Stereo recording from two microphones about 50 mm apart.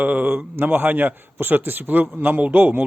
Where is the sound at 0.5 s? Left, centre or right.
Right.